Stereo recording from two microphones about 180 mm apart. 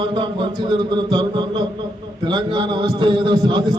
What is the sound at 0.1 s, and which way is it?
A man's voice, 25° right (ahead or behind).